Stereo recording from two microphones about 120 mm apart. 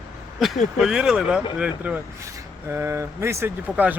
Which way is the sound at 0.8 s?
5° right (ahead or behind).